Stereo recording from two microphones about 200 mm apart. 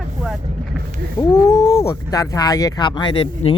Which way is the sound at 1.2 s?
15° left (ahead or behind).